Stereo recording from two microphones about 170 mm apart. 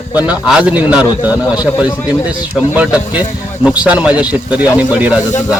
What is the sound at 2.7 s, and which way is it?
A man's voice, 10° right (ahead or behind).